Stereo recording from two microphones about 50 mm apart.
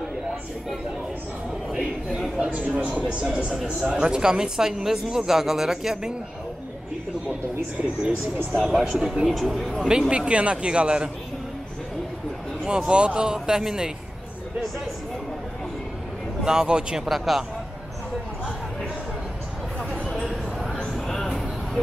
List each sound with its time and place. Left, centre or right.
1.7 s a sound: centre
2.6 s speech: right; by 6.1 s centre
8.5 s speech: centre
8.7 s speech: centre
9.0 s speech: centre
9.3 s speech: centre
9.7 s speech: centre
12.6 s speech: centre
16.4 s speech: centre
17.1 s speech: centre
20.2 s a sound: centre